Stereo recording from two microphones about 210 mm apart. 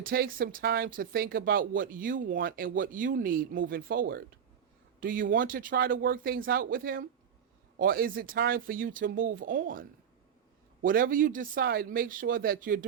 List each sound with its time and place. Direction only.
0.0 s speech: 45° right (ahead or behind)
10.8 s speech: 40° right (ahead or behind)